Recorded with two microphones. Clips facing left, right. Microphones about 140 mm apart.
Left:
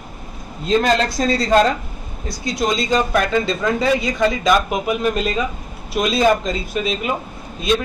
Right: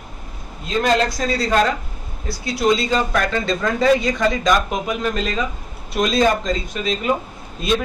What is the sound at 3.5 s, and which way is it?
A man's voice, 5° left (ahead or behind).